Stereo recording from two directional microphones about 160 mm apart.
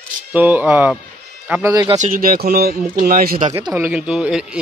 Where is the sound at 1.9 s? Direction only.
55° right (ahead or behind).